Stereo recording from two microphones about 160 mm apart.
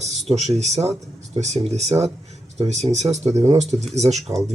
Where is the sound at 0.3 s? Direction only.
45° right (ahead or behind).